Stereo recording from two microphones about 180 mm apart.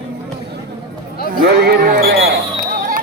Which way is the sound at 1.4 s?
60° right (ahead or behind).